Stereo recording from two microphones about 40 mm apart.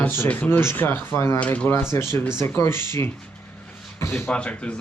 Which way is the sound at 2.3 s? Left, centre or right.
Left.